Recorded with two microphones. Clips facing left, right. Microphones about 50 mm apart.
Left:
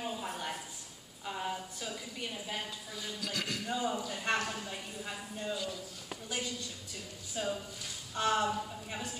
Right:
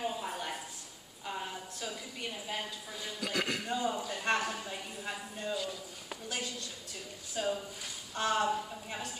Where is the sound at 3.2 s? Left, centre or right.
Right.